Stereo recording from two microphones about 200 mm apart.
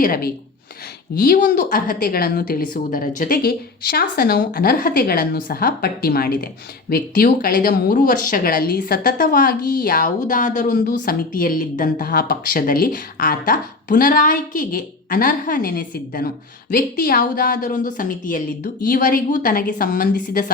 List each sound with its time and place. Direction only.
0.0 s speech: 45° left (ahead or behind)